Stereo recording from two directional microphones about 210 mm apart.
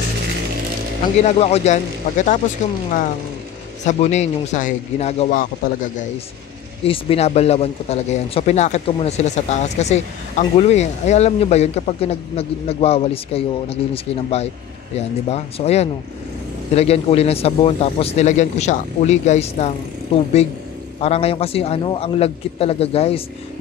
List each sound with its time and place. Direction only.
1.2 s a man's voice: 30° left (ahead or behind)
3.8 s a man's voice: 30° left (ahead or behind)
6.8 s a man's voice: 25° left (ahead or behind)
21.0 s speech: 30° left (ahead or behind)